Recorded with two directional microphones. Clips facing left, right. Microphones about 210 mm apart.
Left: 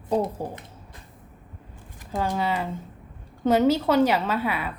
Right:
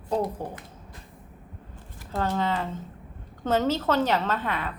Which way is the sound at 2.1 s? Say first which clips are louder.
Left 1 dB; 10° left (ahead or behind).